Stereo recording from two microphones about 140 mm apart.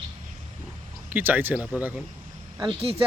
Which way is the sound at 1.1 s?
15° right (ahead or behind).